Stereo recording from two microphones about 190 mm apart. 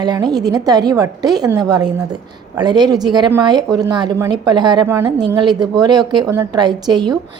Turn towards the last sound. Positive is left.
turn(degrees=-20)  # may be behind; listen again after turning